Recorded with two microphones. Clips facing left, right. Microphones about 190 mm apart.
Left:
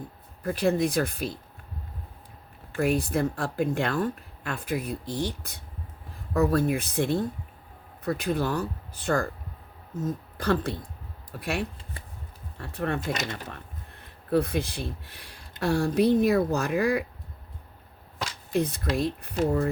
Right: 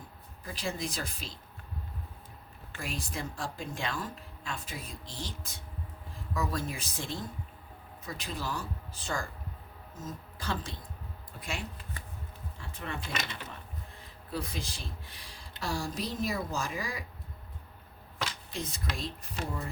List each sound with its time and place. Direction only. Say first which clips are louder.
0.4 s speech: left 12 dB; 60° left (ahead or behind)
2.7 s speech: left 14 dB; 60° left (ahead or behind)
18.5 s speech: left 17 dB; 60° left (ahead or behind)